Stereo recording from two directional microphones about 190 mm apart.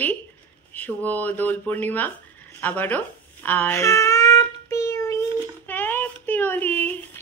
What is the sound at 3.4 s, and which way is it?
Child singing, 10° left (ahead or behind).